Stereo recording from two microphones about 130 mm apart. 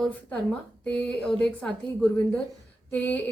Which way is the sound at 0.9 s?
5° left (ahead or behind).